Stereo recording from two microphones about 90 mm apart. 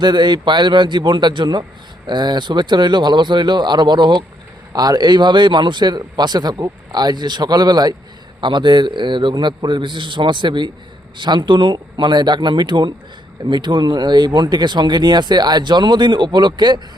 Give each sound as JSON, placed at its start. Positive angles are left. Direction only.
{"t": 0.0, "sound": "speech", "side_deg": -55}
{"t": 4.7, "sound": "a man's voice", "side_deg": -45}
{"t": 8.4, "sound": "speech", "side_deg": -60}